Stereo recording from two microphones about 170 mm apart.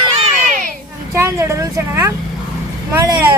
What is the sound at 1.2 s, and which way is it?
Vehicle, 15° right (ahead or behind).